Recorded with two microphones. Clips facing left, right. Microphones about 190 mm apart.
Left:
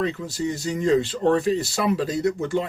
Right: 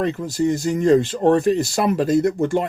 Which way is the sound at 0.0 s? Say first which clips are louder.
Right 5 dB; 50° right (ahead or behind).